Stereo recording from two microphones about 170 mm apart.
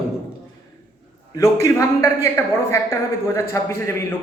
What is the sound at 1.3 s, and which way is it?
A man's voice, 20° left (ahead or behind).